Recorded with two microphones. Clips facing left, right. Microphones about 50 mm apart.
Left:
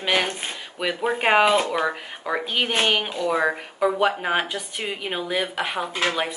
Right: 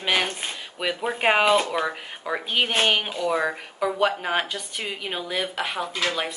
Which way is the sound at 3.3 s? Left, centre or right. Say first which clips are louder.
Left 3 dB; centre.